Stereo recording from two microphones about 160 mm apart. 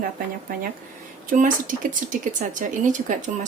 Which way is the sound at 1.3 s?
55° right (ahead or behind).